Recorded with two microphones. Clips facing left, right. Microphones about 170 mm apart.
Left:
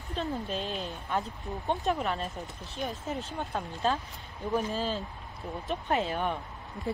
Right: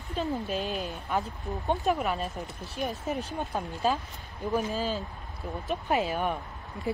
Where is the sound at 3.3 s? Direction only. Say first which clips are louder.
Right 2 dB; 15° right (ahead or behind).